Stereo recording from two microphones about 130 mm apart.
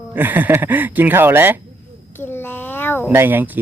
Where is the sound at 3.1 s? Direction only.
15° right (ahead or behind).